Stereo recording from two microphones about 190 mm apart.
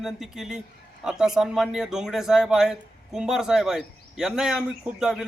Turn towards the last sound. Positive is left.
turn(degrees=-5)  # may be behind; listen again after turning